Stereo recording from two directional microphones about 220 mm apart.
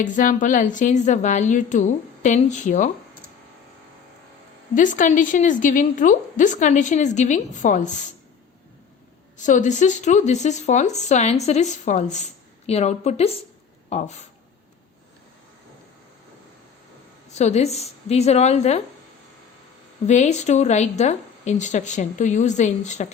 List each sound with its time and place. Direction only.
0.0 s a woman's voice: 35° left (ahead or behind)
4.7 s a woman's voice: 35° left (ahead or behind)
9.5 s a woman's voice: 35° left (ahead or behind)
17.3 s a woman's voice: 30° left (ahead or behind)
20.1 s a woman's voice: 30° left (ahead or behind)